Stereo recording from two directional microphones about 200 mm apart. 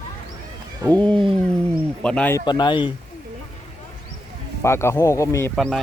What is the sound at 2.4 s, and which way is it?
Speech, 20° left (ahead or behind).